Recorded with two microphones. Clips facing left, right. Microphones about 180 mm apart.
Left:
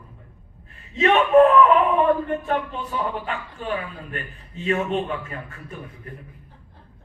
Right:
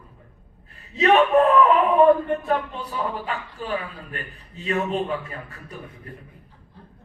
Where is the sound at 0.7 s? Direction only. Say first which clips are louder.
Even; 35° right (ahead or behind).